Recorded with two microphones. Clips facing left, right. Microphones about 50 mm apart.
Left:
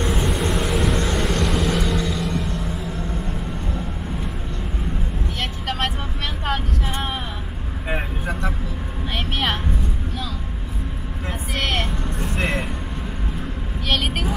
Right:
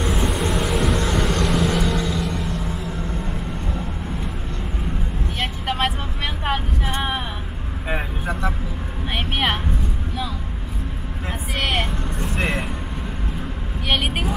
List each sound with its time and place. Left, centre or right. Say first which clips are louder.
0.0 s vehicle: even; centre
5.4 s vehicle: right 3 dB; centre
7.9 s vehicle: even; centre
9.1 s a sound: right 2 dB; centre
11.2 s vehicle: even; centre
13.8 s vehicle: right 1 dB; centre